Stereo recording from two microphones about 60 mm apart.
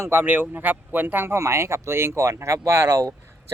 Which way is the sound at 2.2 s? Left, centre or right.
Right.